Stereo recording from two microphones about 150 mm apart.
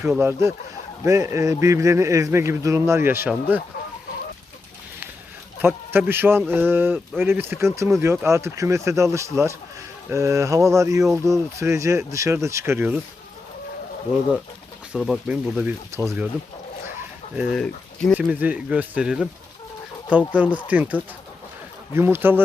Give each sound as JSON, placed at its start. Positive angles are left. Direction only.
{"t": 0.0, "sound": "speech", "side_deg": -15}
{"t": 5.6, "sound": "speech", "side_deg": -15}
{"t": 14.9, "sound": "speech", "side_deg": -5}
{"t": 17.3, "sound": "speech", "side_deg": 0}
{"t": 18.2, "sound": "speech", "side_deg": -10}
{"t": 20.3, "sound": "speech", "side_deg": -10}